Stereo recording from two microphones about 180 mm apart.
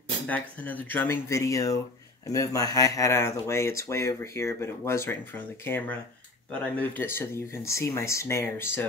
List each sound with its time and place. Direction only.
0.3 s speech: 10° left (ahead or behind)